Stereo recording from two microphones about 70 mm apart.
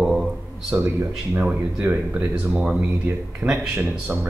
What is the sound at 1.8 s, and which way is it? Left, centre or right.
Speech, right.